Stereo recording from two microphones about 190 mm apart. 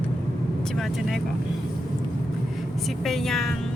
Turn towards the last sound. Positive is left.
turn(degrees=0)  # may be behind; listen again after turning